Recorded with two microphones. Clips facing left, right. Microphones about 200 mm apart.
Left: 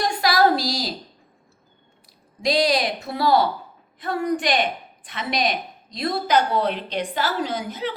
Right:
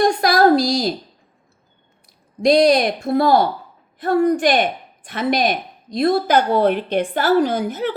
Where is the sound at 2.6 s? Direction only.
50° right (ahead or behind).